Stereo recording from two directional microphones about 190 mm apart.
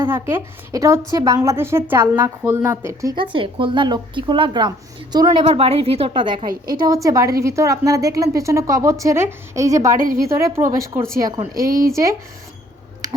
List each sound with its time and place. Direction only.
0.0 s a woman's voice: 10° right (ahead or behind)
11.5 s speech: 50° right (ahead or behind)